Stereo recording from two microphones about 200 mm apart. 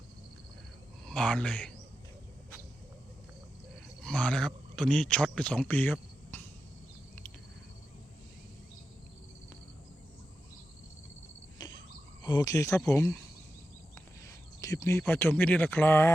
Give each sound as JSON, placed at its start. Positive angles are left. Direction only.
{"t": 1.0, "sound": "speech", "side_deg": 5}
{"t": 4.0, "sound": "speech", "side_deg": 5}
{"t": 11.6, "sound": "cricket", "side_deg": 20}
{"t": 12.2, "sound": "speech", "side_deg": 20}